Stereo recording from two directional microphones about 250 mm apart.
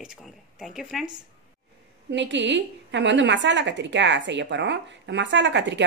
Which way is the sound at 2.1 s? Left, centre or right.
Right.